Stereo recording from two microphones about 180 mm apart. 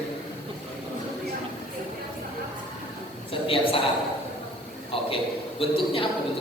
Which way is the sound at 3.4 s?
30° left (ahead or behind).